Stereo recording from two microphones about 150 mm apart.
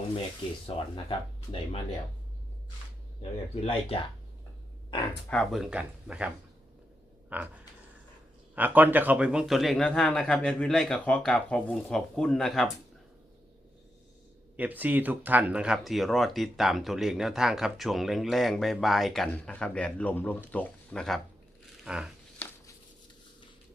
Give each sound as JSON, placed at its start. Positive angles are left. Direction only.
{"t": 0.7, "sound": "speech", "side_deg": 40}
{"t": 3.5, "sound": "speech", "side_deg": 40}
{"t": 5.3, "sound": "speech", "side_deg": 5}
{"t": 8.5, "sound": "speech", "side_deg": -10}
{"t": 14.5, "sound": "speech", "side_deg": -10}
{"t": 22.4, "sound": "a sound", "side_deg": 15}